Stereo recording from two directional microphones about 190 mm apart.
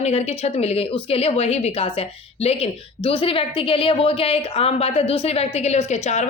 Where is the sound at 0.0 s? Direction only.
35° left (ahead or behind).